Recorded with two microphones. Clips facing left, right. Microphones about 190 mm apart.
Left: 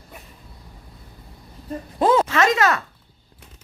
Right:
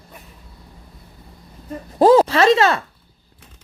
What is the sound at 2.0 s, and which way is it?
Speech, 35° right (ahead or behind).